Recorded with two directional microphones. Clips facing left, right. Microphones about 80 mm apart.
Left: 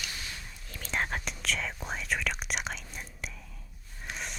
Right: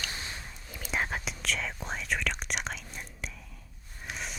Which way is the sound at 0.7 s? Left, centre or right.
Centre.